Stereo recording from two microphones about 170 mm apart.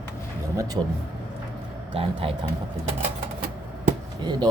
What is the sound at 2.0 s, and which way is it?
Speech, 35° right (ahead or behind).